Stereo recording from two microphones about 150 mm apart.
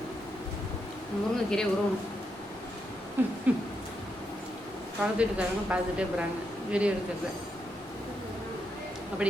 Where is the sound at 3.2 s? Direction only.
15° right (ahead or behind).